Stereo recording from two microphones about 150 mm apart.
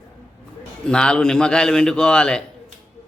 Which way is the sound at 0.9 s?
5° left (ahead or behind).